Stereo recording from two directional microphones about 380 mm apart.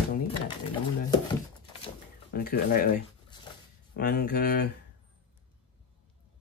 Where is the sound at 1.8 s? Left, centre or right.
Left.